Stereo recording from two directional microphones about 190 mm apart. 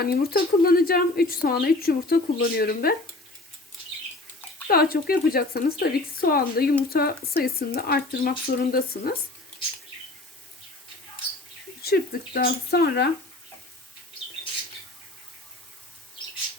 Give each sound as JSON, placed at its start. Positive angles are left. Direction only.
{"t": 0.0, "sound": "a woman's voice", "side_deg": 55}
{"t": 4.7, "sound": "a woman's voice", "side_deg": 55}
{"t": 11.8, "sound": "speech", "side_deg": 55}